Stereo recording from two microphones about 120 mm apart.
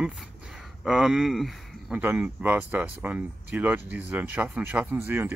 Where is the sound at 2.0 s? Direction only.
15° right (ahead or behind).